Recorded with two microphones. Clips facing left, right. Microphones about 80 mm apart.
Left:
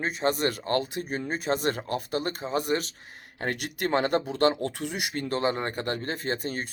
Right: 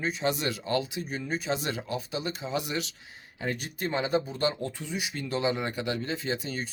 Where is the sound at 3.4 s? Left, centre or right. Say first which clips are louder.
Left 3 dB; left.